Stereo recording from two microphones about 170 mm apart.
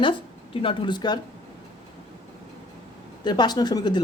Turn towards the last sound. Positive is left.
turn(degrees=25)  # may be behind; listen again after turning